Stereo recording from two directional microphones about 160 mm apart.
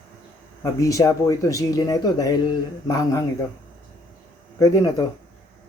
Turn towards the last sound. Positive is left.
turn(degrees=20)  # may be behind; listen again after turning